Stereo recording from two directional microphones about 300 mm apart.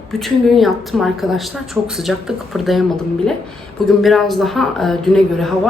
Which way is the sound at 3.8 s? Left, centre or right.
Centre.